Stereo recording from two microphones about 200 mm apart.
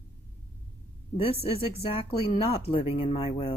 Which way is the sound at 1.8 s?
25° left (ahead or behind).